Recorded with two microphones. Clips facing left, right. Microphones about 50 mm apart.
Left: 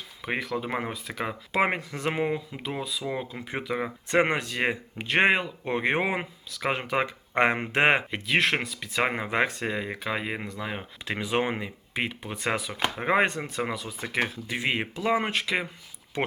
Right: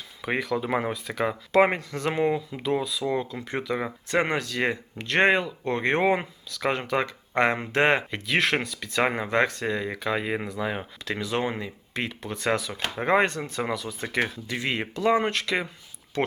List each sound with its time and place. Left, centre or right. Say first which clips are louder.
0.2 s speech: right 3 dB; centre
4.1 s speech: left 1 dB; left
8.3 s speech: even; centre
11.0 s speech: left 1 dB; centre
13.6 s speech: right 3 dB; centre